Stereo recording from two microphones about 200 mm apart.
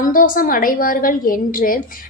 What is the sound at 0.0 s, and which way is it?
A woman's voice, 45° left (ahead or behind).